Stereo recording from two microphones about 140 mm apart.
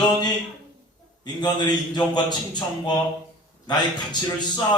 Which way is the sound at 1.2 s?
30° left (ahead or behind).